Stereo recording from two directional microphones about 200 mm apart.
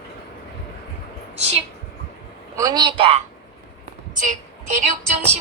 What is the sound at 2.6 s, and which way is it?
Speech, 20° right (ahead or behind).